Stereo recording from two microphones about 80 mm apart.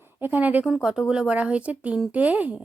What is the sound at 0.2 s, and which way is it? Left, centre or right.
Speech, right.